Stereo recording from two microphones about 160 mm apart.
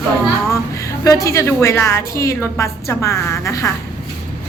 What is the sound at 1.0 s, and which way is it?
A woman's voice, 20° left (ahead or behind).